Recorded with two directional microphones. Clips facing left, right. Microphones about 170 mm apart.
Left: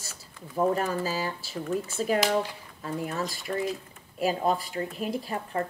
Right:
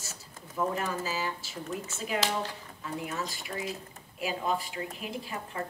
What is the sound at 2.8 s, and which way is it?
Speech, 40° left (ahead or behind).